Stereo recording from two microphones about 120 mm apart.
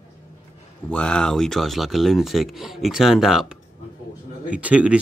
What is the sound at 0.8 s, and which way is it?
Speech, 10° left (ahead or behind).